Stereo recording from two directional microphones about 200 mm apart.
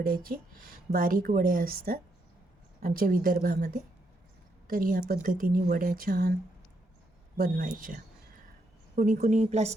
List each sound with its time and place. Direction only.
0.0 s a woman's voice: 45° right (ahead or behind)
4.7 s a woman's voice: 45° right (ahead or behind)
7.3 s a woman's voice: 45° right (ahead or behind)